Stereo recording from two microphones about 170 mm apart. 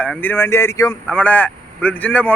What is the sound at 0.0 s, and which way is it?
A man's voice, 10° left (ahead or behind).